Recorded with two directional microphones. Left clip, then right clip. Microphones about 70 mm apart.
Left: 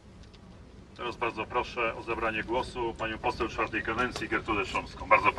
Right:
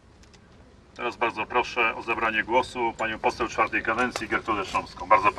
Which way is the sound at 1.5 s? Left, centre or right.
Right.